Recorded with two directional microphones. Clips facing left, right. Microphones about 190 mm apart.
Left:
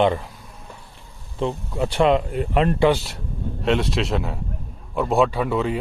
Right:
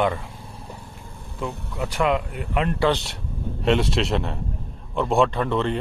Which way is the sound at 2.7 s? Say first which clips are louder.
Left 2 dB; 10° left (ahead or behind).